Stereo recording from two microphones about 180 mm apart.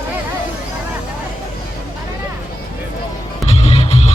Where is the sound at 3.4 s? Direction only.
35° left (ahead or behind).